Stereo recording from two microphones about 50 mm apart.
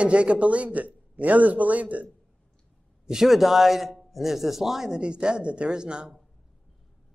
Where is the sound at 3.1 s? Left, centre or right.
Centre.